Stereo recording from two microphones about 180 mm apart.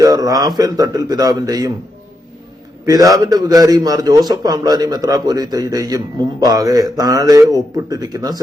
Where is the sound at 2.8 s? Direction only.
20° right (ahead or behind).